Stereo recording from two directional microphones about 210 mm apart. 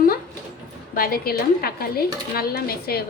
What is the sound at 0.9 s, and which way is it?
Dishes, 45° left (ahead or behind).